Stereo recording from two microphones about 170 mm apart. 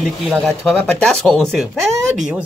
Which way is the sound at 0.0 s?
Centre (ahead or behind).